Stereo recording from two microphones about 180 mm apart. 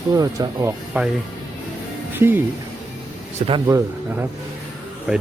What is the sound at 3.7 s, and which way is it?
A man's voice, 15° right (ahead or behind).